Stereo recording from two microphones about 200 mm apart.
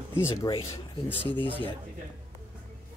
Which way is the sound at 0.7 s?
10° left (ahead or behind).